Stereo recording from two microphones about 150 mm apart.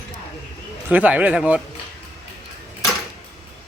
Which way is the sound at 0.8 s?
10° right (ahead or behind).